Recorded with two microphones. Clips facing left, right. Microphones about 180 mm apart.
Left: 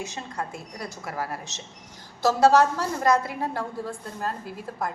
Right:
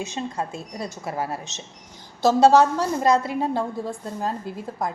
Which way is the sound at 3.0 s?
25° right (ahead or behind).